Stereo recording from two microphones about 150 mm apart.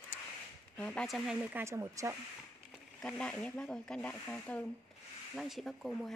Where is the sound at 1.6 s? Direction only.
20° right (ahead or behind).